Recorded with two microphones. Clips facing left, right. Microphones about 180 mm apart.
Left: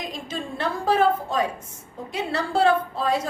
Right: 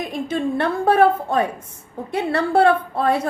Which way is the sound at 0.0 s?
60° right (ahead or behind).